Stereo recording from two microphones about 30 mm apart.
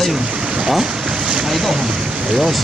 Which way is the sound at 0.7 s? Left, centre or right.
Centre.